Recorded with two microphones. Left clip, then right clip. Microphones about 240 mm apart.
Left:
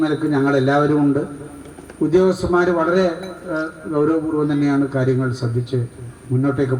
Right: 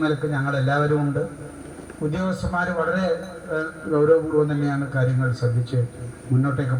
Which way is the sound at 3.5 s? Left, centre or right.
Left.